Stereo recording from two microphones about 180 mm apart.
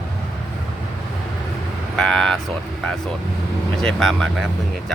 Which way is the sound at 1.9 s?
Centre (ahead or behind).